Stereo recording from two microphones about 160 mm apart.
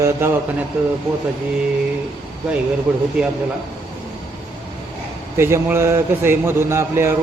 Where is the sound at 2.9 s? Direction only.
5° right (ahead or behind).